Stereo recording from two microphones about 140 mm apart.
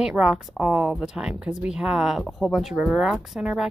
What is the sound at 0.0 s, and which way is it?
Speech, 5° right (ahead or behind).